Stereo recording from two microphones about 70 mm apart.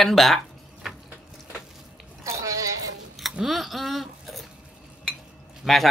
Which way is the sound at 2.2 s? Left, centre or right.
Right.